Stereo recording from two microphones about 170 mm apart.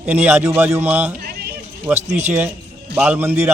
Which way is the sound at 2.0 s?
40° right (ahead or behind).